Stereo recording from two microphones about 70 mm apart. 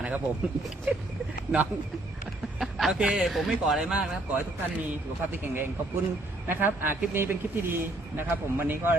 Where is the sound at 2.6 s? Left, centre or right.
Centre.